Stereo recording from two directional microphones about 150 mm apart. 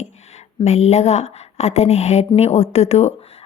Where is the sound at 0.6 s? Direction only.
45° left (ahead or behind).